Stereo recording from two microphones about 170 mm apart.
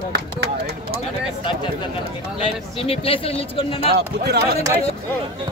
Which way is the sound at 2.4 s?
35° left (ahead or behind).